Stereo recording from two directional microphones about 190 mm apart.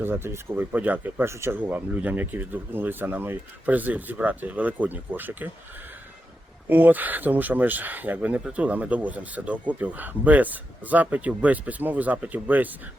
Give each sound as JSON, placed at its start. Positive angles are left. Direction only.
{"t": 0.0, "sound": "speech", "side_deg": -10}
{"t": 6.7, "sound": "speech", "side_deg": -10}